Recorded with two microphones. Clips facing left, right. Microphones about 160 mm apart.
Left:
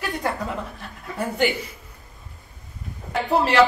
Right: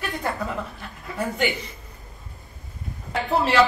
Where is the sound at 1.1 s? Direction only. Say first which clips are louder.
Left 2 dB; centre (ahead or behind).